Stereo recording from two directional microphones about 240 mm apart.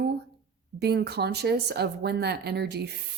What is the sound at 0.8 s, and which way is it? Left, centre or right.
A woman's voice, right.